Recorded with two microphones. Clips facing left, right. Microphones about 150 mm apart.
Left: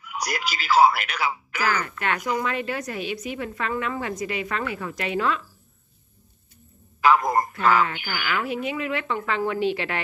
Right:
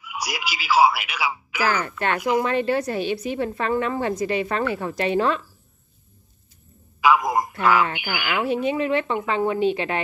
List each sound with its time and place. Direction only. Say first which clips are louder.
0.0 s speech: left 1 dB; 5° right (ahead or behind)
1.7 s a woman's voice: right 2 dB; 30° right (ahead or behind)
7.0 s a sound: even; 5° right (ahead or behind)
7.6 s speech: right 2 dB; 10° right (ahead or behind)
8.5 s speech: right 5 dB; 30° right (ahead or behind)